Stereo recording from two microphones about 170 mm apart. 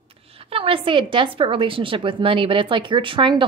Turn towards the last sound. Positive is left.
turn(degrees=-30)  # may be behind; listen again after turning